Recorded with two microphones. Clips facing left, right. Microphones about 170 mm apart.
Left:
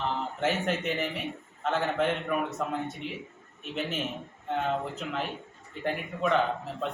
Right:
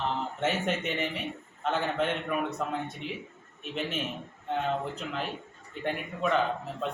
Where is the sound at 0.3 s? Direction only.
Centre (ahead or behind).